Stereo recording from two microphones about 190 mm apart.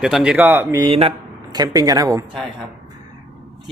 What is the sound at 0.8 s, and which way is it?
Speech, 30° right (ahead or behind).